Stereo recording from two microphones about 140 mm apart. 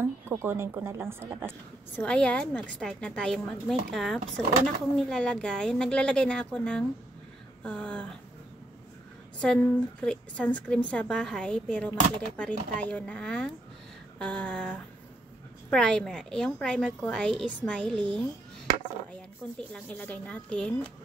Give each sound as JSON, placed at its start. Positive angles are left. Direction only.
{"t": 0.3, "sound": "speech", "side_deg": -15}
{"t": 2.0, "sound": "a woman's voice", "side_deg": 10}
{"t": 4.2, "sound": "speech", "side_deg": -60}
{"t": 4.9, "sound": "a woman's voice", "side_deg": 5}
{"t": 9.4, "sound": "a woman's voice", "side_deg": 5}
{"t": 19.7, "sound": "a woman's voice", "side_deg": 10}